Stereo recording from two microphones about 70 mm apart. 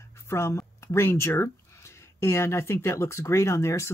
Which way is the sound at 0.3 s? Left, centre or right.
Left.